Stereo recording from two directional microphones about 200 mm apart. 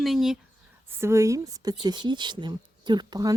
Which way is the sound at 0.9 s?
15° right (ahead or behind).